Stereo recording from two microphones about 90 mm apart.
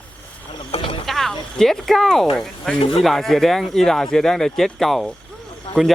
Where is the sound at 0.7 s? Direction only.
80° left.